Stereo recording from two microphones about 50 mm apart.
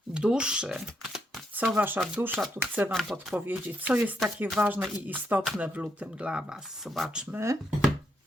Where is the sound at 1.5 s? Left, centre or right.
Right.